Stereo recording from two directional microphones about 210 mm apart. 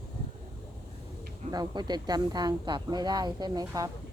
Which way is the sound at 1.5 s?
20° right (ahead or behind).